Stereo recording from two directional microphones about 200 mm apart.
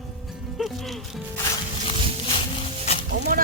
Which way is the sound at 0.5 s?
Centre (ahead or behind).